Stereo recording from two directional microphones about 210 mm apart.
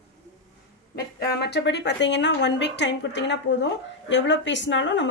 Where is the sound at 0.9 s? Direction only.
50° left (ahead or behind).